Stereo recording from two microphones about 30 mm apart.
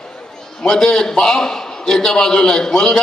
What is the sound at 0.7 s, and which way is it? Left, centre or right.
A man's voice, left.